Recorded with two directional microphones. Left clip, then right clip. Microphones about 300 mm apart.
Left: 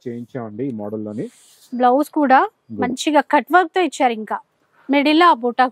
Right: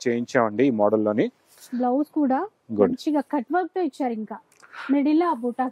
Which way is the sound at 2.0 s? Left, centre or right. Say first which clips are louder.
Left 10 dB; centre.